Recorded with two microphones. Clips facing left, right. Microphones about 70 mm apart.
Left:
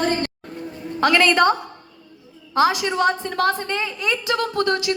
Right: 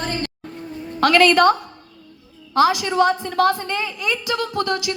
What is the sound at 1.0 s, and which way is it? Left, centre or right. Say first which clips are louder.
Speech: right 2 dB; centre.